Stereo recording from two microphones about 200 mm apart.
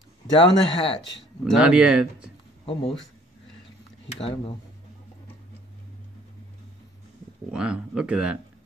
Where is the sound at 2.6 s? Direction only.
25° left (ahead or behind).